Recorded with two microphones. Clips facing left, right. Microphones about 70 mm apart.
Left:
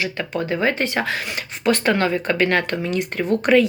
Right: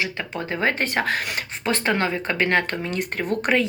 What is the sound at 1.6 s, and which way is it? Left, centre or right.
Speech, right.